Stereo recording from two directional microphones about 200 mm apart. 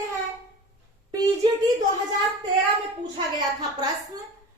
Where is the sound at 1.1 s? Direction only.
20° right (ahead or behind).